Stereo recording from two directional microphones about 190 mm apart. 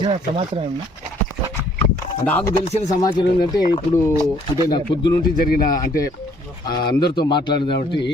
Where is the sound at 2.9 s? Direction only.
20° left (ahead or behind).